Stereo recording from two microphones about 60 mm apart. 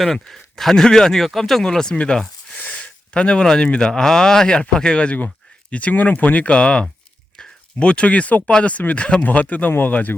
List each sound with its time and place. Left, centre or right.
0.0 s speech: centre
7.3 s a sound: centre
8.4 s speech: left